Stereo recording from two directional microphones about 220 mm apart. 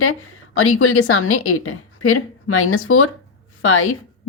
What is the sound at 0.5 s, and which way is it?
A woman's voice, 70° left (ahead or behind).